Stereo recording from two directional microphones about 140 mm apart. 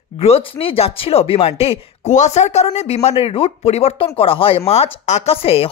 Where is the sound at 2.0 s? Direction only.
55° left (ahead or behind).